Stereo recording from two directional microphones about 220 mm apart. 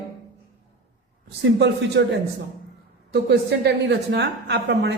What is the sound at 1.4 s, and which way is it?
Speech, 55° right (ahead or behind).